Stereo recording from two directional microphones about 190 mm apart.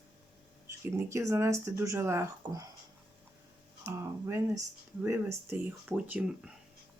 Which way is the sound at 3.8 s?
15° right (ahead or behind).